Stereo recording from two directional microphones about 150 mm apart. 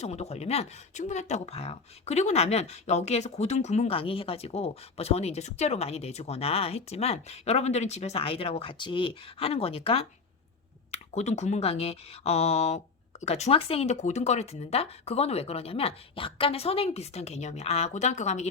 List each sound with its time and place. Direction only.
0.0 s speech: 45° left (ahead or behind)